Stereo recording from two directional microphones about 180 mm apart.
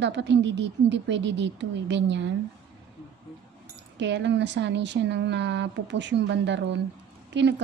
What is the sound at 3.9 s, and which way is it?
Speech, 80° right.